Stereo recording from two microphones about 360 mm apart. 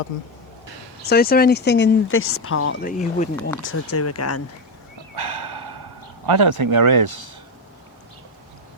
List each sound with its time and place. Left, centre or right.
1.0 s speech: left
2.8 s speech: left
3.7 s speech: left
5.1 s dog: right
6.2 s speech: right